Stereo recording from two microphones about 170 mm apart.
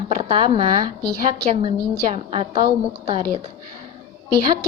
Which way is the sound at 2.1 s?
35° right (ahead or behind).